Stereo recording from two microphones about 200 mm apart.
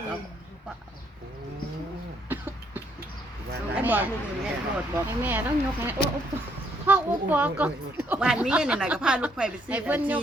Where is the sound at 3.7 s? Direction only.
10° right (ahead or behind).